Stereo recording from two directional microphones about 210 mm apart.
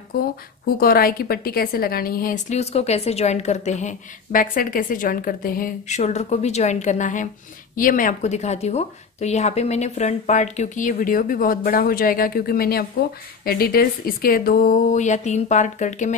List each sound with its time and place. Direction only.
0.7 s a woman's voice: 45° left (ahead or behind)